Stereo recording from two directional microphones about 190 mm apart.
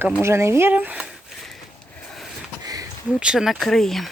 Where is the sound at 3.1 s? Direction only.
5° right (ahead or behind).